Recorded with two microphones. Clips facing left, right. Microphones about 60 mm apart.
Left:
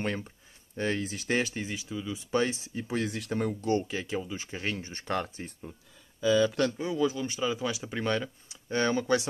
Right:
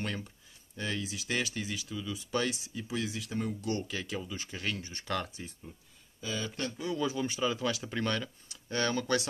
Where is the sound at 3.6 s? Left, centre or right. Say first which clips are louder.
Left 6 dB; left.